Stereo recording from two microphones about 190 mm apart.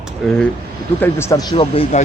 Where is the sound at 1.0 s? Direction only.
15° left (ahead or behind); by 2.0 s 30° left (ahead or behind).